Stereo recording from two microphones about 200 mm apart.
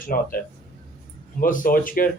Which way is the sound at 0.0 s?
45° left (ahead or behind).